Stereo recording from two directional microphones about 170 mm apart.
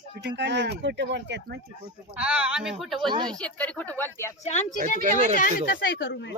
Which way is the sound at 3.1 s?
25° right (ahead or behind).